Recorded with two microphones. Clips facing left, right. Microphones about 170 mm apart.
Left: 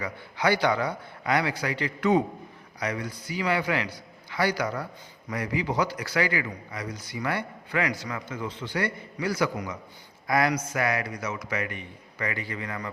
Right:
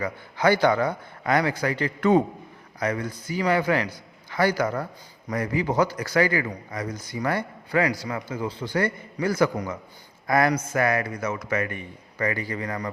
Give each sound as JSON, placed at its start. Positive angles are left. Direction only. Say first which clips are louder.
{"t": 0.0, "sound": "a man's voice", "louder": "right 4 dB", "side_deg": -45}